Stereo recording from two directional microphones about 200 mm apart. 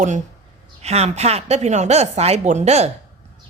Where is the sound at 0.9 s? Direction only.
35° right (ahead or behind).